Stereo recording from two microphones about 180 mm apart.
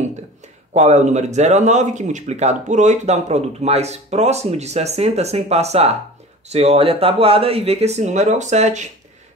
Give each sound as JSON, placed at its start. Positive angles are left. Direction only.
{"t": 0.7, "sound": "speech", "side_deg": -40}